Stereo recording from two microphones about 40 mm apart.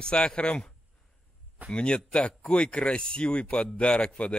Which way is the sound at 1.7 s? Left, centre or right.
Left.